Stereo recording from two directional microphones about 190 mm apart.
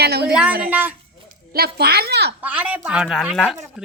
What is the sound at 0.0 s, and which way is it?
Speech, 55° right (ahead or behind).